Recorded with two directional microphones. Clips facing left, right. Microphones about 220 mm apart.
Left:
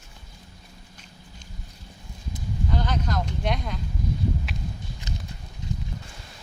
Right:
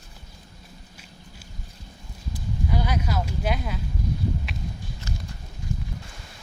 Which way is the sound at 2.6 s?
10° right (ahead or behind).